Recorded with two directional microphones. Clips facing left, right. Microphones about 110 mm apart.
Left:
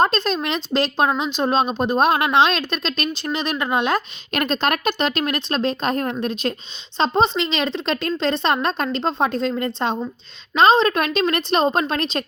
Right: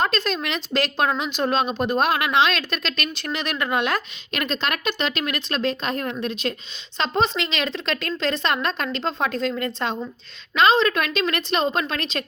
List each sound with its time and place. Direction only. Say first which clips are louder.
0.0 s speech: left 4 dB; 30° left (ahead or behind)
4.3 s a woman's voice: left 5 dB; 40° left (ahead or behind)
6.9 s a woman's voice: left 4 dB; 30° left (ahead or behind)